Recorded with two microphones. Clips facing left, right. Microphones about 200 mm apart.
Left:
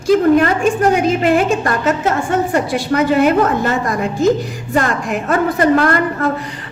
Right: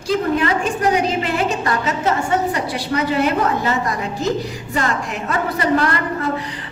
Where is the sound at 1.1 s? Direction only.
50° left (ahead or behind).